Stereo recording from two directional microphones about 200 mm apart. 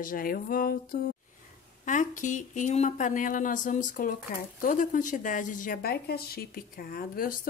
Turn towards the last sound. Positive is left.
turn(degrees=45)  # may be behind; listen again after turning